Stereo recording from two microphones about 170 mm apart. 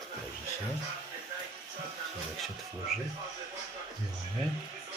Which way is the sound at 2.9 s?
Centre (ahead or behind).